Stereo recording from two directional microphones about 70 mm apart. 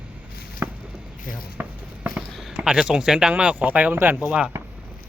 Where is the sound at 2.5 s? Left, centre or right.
Centre; by 4.3 s right.